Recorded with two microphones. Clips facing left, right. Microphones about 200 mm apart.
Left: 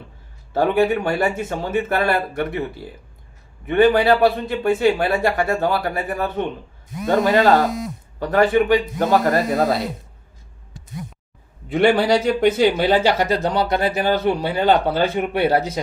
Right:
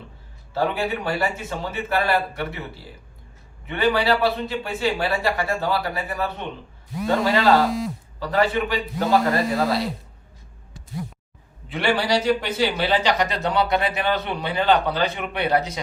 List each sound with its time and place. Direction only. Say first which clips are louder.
0.5 s speech: left 7 dB; 50° left (ahead or behind)
3.7 s speech: left 6 dB; 50° left (ahead or behind)
11.7 s speech: left 6 dB; 50° left (ahead or behind)
13.3 s speech: left 3 dB; centre (ahead or behind)
14.3 s speech: left 3 dB; 45° left (ahead or behind)